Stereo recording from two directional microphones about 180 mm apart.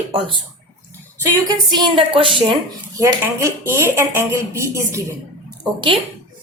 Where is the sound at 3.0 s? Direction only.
15° right (ahead or behind).